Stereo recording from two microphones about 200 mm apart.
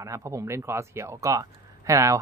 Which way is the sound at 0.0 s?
15° right (ahead or behind).